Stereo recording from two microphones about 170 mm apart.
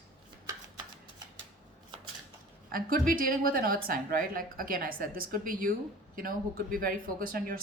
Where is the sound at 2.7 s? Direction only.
55° right (ahead or behind).